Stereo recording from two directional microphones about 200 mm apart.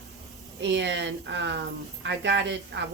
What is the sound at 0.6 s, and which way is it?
A woman's voice, 65° right (ahead or behind).